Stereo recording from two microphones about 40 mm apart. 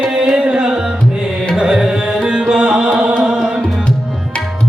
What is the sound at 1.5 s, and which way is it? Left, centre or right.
Carnatic music, centre.